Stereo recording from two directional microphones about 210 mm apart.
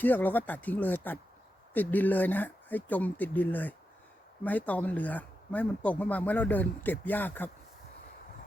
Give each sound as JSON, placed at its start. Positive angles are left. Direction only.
{"t": 0.0, "sound": "speech", "side_deg": 10}